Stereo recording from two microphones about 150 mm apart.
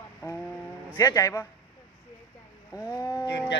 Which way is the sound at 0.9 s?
25° left (ahead or behind).